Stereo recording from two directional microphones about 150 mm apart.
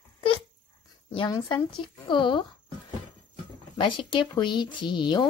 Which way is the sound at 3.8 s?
35° left (ahead or behind).